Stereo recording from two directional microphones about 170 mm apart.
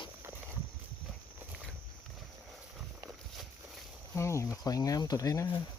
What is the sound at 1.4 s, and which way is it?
Walk, 5° right (ahead or behind).